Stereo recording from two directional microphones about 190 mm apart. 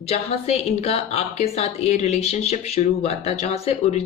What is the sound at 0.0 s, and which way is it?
Speech, 35° left (ahead or behind).